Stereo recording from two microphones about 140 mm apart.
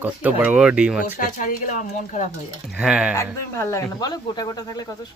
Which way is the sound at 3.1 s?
20° left (ahead or behind).